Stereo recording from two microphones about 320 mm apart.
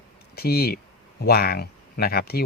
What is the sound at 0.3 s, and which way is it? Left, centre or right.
Speech, left.